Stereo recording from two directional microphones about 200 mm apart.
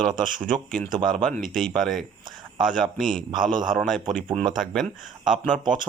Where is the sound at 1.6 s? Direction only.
Centre (ahead or behind).